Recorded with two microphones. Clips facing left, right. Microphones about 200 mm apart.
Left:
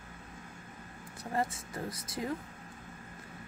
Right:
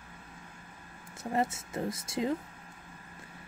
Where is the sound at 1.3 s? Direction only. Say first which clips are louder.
Right 3 dB; 25° right (ahead or behind).